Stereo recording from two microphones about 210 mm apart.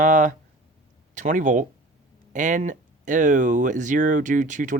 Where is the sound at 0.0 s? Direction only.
40° right (ahead or behind).